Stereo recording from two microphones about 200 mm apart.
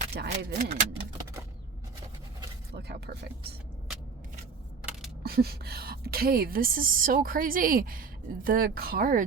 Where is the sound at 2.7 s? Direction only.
55° right (ahead or behind).